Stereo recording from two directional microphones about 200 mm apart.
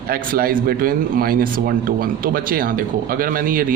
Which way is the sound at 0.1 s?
45° right (ahead or behind).